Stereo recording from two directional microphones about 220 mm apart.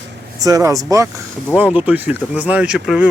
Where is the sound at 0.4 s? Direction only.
15° right (ahead or behind).